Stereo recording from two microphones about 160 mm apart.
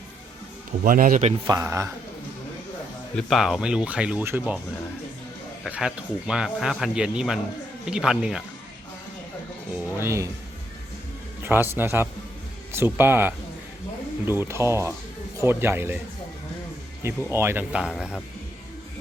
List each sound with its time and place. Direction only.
0.9 s speech: 60° right (ahead or behind)
1.5 s speech: 15° right (ahead or behind)
3.2 s speech: centre (ahead or behind)
5.6 s speech: 5° right (ahead or behind)
9.7 s speech: 15° right (ahead or behind)
11.4 s a man's voice: 10° right (ahead or behind)
17.0 s speech: 15° right (ahead or behind)